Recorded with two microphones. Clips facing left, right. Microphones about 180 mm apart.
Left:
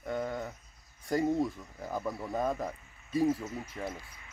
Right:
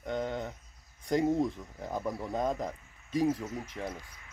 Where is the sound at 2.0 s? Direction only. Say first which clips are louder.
Right 1 dB; 15° right (ahead or behind).